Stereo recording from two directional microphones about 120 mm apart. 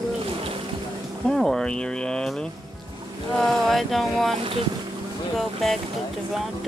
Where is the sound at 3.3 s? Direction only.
Centre (ahead or behind).